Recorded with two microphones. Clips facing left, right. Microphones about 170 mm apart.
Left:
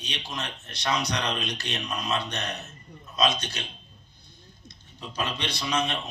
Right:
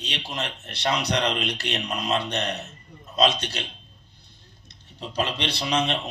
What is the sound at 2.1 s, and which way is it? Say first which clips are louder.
A man's voice: right 5 dB; 30° right (ahead or behind).